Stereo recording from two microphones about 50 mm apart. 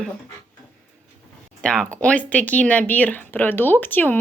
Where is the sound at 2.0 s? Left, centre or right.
Left.